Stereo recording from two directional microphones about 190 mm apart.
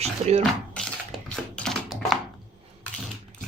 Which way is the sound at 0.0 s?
35° right (ahead or behind).